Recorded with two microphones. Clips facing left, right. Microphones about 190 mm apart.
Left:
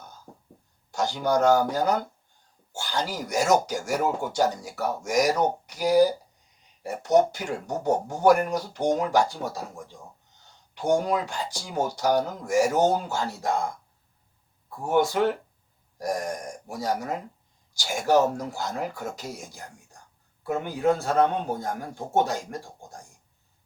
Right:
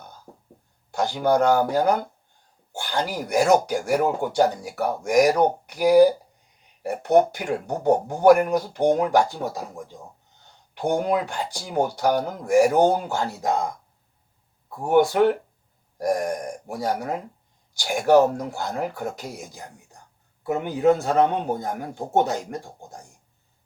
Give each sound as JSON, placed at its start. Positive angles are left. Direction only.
{"t": 0.9, "sound": "speech", "side_deg": -55}
{"t": 10.8, "sound": "speech", "side_deg": -60}
{"t": 13.4, "sound": "speech", "side_deg": -20}
{"t": 14.8, "sound": "speech", "side_deg": -55}
{"t": 20.4, "sound": "a man's voice", "side_deg": -20}